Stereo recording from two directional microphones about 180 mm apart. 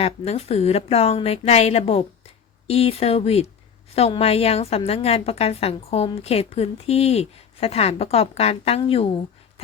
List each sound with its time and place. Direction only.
0.0 s a woman's voice: 35° left (ahead or behind)